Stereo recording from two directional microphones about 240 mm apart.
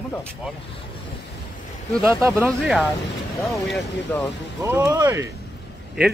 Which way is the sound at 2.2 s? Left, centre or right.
Centre.